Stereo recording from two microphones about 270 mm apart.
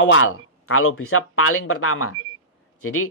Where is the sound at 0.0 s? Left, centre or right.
Left.